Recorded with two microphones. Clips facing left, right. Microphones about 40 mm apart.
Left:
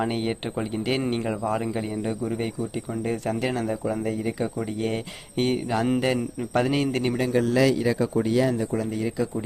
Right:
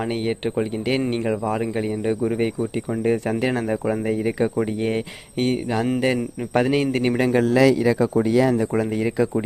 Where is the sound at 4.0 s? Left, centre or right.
Right.